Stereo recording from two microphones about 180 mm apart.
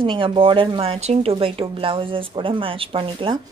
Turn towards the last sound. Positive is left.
turn(degrees=-30)  # may be behind; listen again after turning